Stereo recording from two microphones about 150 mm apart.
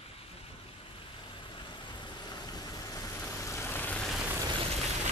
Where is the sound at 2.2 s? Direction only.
25° left (ahead or behind); by 4.3 s centre (ahead or behind).